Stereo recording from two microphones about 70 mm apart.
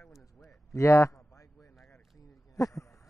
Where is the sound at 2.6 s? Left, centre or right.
Left.